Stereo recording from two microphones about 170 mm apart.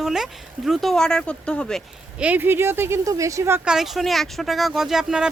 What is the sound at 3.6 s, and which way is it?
Speech, centre (ahead or behind).